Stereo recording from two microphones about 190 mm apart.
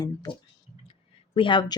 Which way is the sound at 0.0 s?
20° left (ahead or behind).